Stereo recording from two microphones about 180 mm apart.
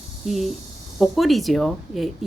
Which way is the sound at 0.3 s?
Centre (ahead or behind).